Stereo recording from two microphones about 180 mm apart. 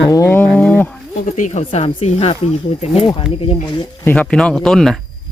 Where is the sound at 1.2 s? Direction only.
45° left (ahead or behind); by 4.0 s 25° left (ahead or behind).